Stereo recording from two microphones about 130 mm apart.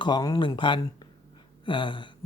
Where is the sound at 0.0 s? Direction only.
35° left (ahead or behind).